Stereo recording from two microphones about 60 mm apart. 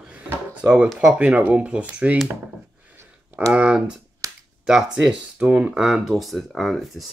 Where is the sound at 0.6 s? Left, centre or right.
Centre.